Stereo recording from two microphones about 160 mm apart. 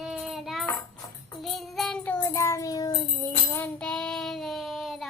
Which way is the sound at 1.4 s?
Centre (ahead or behind).